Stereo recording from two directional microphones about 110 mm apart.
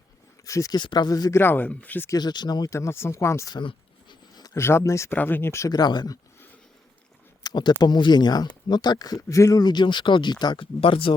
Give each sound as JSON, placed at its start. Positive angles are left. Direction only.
{"t": 0.4, "sound": "speech", "side_deg": 30}
{"t": 0.8, "sound": "speech", "side_deg": 40}
{"t": 1.3, "sound": "speech", "side_deg": 20}
{"t": 2.0, "sound": "speech", "side_deg": 40}
{"t": 3.5, "sound": "a sound", "side_deg": 45}
{"t": 4.6, "sound": "speech", "side_deg": 25}
{"t": 5.7, "sound": "speech", "side_deg": 40}
{"t": 7.4, "sound": "speech", "side_deg": 40}
{"t": 10.8, "sound": "speech", "side_deg": 55}